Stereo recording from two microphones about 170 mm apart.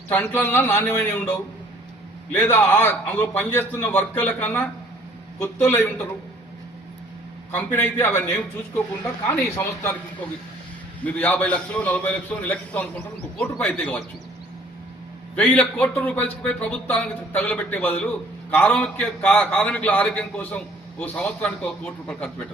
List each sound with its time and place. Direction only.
0.1 s speech: 10° left (ahead or behind)
2.3 s speech: 15° left (ahead or behind)
7.5 s speech: 15° left (ahead or behind)
11.0 s speech: 10° left (ahead or behind)
15.4 s a man's voice: 10° left (ahead or behind)